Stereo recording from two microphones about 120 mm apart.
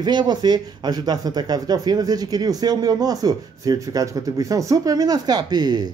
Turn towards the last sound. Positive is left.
turn(degrees=-35)  # may be behind; listen again after turning